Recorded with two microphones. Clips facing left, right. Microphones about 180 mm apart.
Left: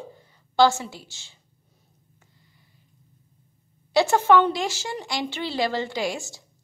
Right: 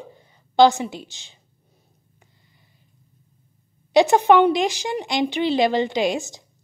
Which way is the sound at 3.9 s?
15° right (ahead or behind).